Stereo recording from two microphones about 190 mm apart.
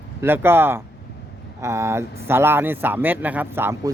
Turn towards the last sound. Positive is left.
turn(degrees=-10)  # may be behind; listen again after turning